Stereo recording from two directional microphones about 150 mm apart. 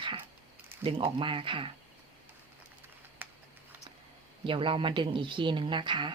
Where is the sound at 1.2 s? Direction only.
35° right (ahead or behind).